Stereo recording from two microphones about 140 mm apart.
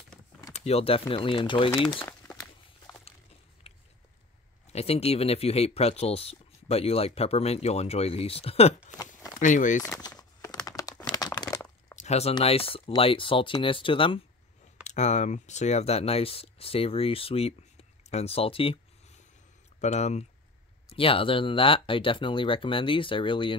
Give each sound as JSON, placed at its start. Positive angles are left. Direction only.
{"t": 0.5, "sound": "speech", "side_deg": 45}
{"t": 3.6, "sound": "biting", "side_deg": 45}
{"t": 4.7, "sound": "speech", "side_deg": 45}
{"t": 9.4, "sound": "speech", "side_deg": 65}
{"t": 10.7, "sound": "crumpling", "side_deg": 25}
{"t": 11.9, "sound": "a sound", "side_deg": 50}
{"t": 12.4, "sound": "speech", "side_deg": 40}
{"t": 14.8, "sound": "speech", "side_deg": 55}
{"t": 19.8, "sound": "speech", "side_deg": 55}
{"t": 20.9, "sound": "speech", "side_deg": 40}